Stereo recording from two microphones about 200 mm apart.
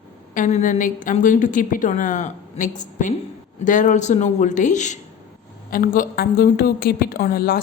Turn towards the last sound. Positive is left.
turn(degrees=45)  # may be behind; listen again after turning